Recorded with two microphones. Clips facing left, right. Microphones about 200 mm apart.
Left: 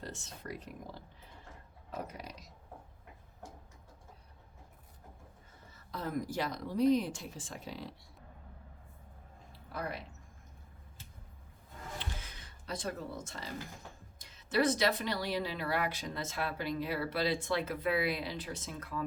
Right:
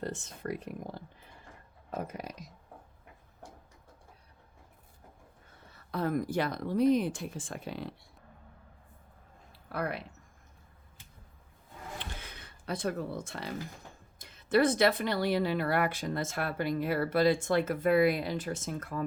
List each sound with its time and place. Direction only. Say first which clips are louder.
0.0 s speech: right 8 dB; 50° right (ahead or behind)
5.7 s speech: right 6 dB; 60° right (ahead or behind)
9.7 s speech: right 5 dB; 65° right (ahead or behind)
12.1 s a sound: right 2 dB; 60° right (ahead or behind)
14.2 s speech: right 5 dB; 55° right (ahead or behind)